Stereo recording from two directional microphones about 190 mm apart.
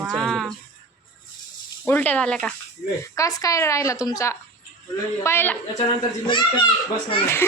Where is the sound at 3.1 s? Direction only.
20° left (ahead or behind).